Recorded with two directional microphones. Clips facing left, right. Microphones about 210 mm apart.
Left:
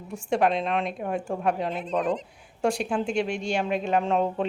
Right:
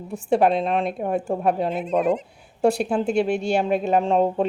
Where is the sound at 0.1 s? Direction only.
35° right (ahead or behind).